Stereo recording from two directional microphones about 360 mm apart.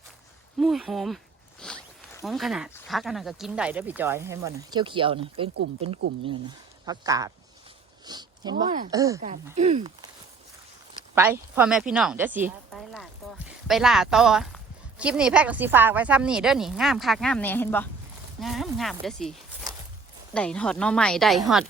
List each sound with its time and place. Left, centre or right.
0.6 s a woman's voice: centre
6.8 s speech: centre
8.0 s a sound: centre
8.9 s speech: centre
11.1 s a woman's voice: centre
20.3 s a woman's voice: centre